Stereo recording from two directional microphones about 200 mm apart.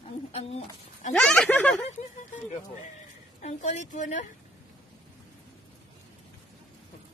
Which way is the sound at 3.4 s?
35° left (ahead or behind).